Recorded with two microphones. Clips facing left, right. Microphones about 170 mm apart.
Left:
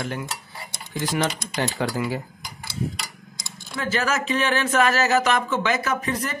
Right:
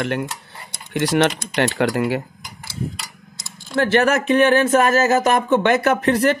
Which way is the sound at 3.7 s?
65° right (ahead or behind).